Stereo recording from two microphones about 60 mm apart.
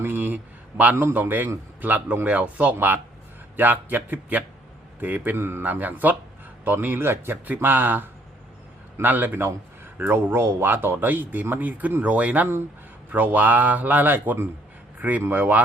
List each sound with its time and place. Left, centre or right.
0.0 s a sound: right
1.1 s a man's voice: right
5.4 s a man's voice: right